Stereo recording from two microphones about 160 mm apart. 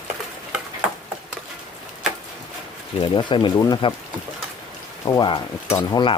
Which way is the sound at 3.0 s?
30° left (ahead or behind).